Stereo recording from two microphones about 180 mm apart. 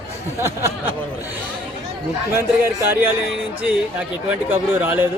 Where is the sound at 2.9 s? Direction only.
10° right (ahead or behind).